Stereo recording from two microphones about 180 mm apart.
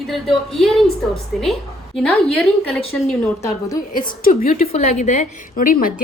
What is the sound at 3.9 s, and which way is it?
Speech, 50° left (ahead or behind).